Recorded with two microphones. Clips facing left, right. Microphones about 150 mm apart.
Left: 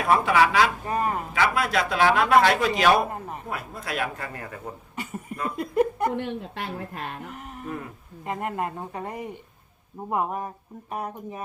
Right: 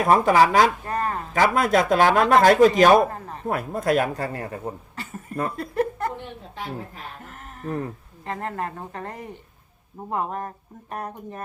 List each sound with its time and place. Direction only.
0.0 s speech: 40° right (ahead or behind)
0.9 s a woman's voice: 15° left (ahead or behind)
1.3 s speech: 45° right (ahead or behind)
3.1 s a woman's voice: 15° left (ahead or behind)
3.4 s speech: 50° right (ahead or behind); by 4.7 s 35° right (ahead or behind)
5.5 s speech: 15° left (ahead or behind)
6.1 s a woman's voice: 70° left (ahead or behind)
8.2 s a woman's voice: 15° left (ahead or behind)